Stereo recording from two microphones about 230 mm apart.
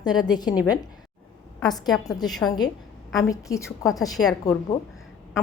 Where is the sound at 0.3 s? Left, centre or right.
Centre.